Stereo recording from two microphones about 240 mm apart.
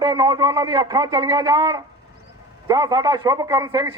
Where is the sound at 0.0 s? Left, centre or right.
Centre.